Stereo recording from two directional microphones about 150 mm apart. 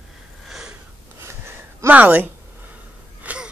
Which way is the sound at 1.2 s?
15° right (ahead or behind).